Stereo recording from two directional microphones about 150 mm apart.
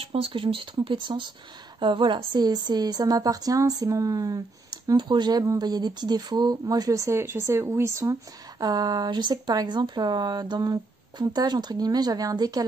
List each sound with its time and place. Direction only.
0.0 s speech: 40° right (ahead or behind)